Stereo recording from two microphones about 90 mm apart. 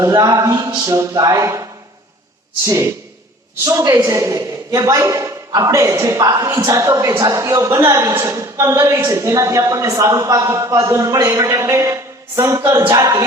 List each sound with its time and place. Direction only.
0.0 s a man's voice: 35° right (ahead or behind)
2.6 s a man's voice: 30° right (ahead or behind)